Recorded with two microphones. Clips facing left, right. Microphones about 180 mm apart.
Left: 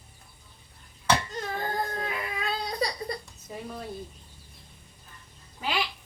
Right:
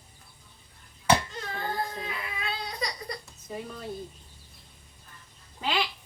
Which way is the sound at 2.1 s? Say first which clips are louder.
Left 4 dB; 40° left (ahead or behind).